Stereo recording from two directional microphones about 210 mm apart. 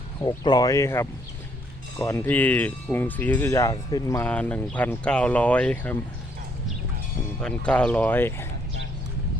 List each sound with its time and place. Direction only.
0.2 s speech: 20° left (ahead or behind)
7.3 s speech: 5° left (ahead or behind)